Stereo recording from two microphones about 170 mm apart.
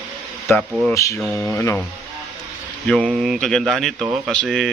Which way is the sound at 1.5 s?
15° left (ahead or behind).